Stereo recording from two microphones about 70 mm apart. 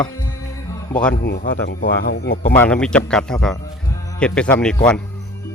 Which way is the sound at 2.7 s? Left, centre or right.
Centre.